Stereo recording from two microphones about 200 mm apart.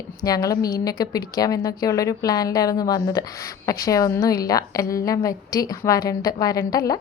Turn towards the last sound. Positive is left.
turn(degrees=20)  # may be behind; listen again after turning